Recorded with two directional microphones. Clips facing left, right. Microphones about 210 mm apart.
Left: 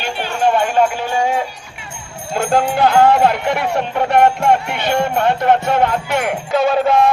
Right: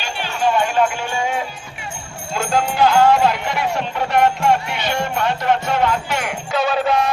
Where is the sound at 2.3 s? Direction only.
55° left (ahead or behind).